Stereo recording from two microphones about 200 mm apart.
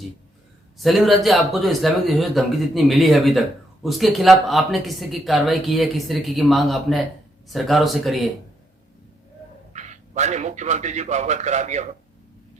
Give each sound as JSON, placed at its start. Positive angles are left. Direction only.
{"t": 0.8, "sound": "speech", "side_deg": 0}
{"t": 9.7, "sound": "a man's voice", "side_deg": -35}